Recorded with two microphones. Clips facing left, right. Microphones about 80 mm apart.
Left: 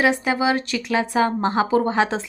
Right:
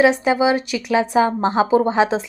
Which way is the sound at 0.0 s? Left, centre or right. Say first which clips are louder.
Right 4 dB; right.